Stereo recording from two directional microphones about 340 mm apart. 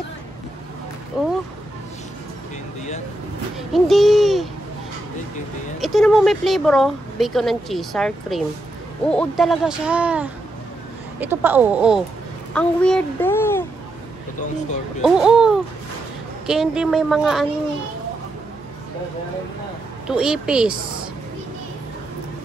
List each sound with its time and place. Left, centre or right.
1.1 s speech: centre
3.7 s a sound: centre
5.8 s a child's voice: centre
15.0 s speech: centre
20.1 s speech: centre